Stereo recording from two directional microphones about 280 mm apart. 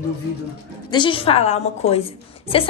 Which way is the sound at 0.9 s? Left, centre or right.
Centre.